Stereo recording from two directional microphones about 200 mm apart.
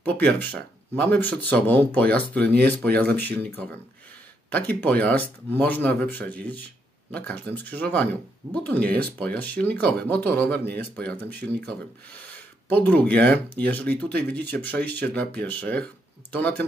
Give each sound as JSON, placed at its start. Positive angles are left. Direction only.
{"t": 0.0, "sound": "speech", "side_deg": 10}
{"t": 10.6, "sound": "a man's voice", "side_deg": -55}
{"t": 11.0, "sound": "speech", "side_deg": 10}
{"t": 12.6, "sound": "speech", "side_deg": 10}